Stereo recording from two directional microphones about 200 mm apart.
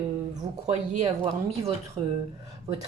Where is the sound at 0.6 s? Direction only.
35° right (ahead or behind).